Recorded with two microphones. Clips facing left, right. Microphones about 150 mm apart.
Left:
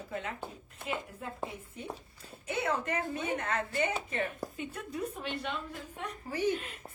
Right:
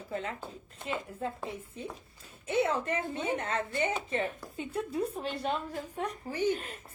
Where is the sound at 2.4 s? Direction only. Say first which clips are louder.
Right 4 dB; 30° right (ahead or behind).